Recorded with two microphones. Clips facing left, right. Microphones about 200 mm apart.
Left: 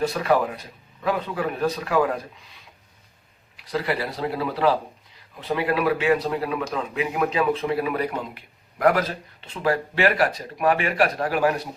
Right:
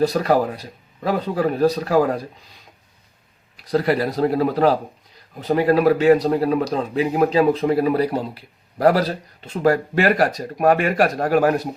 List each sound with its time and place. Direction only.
0.0 s speech: 40° right (ahead or behind)
3.6 s speech: 40° right (ahead or behind)